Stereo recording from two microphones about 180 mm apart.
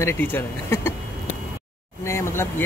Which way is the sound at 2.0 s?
15° left (ahead or behind).